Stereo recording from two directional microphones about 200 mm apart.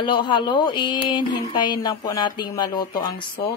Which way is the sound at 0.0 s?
25° left (ahead or behind).